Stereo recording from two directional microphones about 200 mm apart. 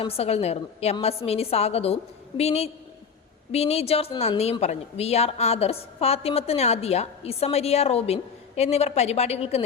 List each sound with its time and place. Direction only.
0.0 s a woman's voice: 30° left (ahead or behind)